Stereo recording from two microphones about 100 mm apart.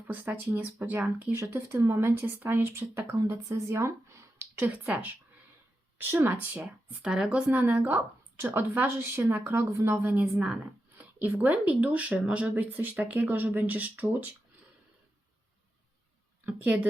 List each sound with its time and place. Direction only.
0.1 s speech: 15° right (ahead or behind)
10.3 s speech: 5° right (ahead or behind)
10.9 s speech: 20° right (ahead or behind)
16.5 s speech: 15° right (ahead or behind)